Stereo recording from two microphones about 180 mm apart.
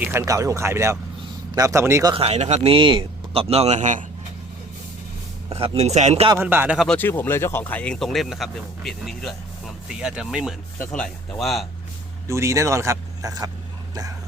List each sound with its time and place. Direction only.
0.0 s speech: 15° right (ahead or behind)
2.1 s speech: 35° right (ahead or behind)
5.5 s speech: 35° right (ahead or behind)
6.2 s speech: 15° right (ahead or behind)
6.8 s speech: 10° left (ahead or behind)
12.3 s speech: 15° right (ahead or behind)